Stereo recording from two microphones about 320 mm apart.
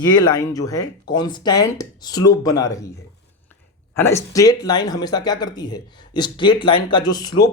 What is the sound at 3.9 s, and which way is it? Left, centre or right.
Speech, centre.